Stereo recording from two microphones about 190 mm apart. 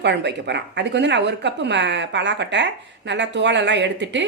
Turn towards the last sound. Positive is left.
turn(degrees=-65)  # may be behind; listen again after turning